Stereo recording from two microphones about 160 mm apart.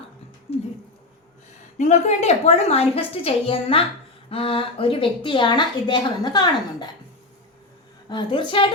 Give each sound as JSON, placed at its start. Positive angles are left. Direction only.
{"t": 0.5, "sound": "a sound", "side_deg": 40}
{"t": 1.8, "sound": "a woman's voice", "side_deg": 45}
{"t": 8.1, "sound": "a woman's voice", "side_deg": 30}